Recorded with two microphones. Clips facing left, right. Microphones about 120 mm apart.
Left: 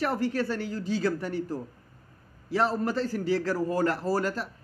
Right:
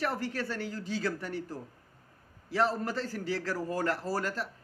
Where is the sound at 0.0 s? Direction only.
20° left (ahead or behind).